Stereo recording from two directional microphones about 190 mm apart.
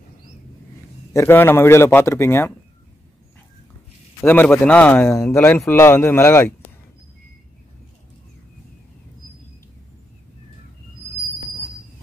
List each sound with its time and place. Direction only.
1.1 s a man's voice: 10° left (ahead or behind)
4.2 s a man's voice: 10° left (ahead or behind)